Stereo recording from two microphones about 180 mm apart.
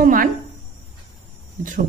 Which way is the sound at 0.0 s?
50° right (ahead or behind).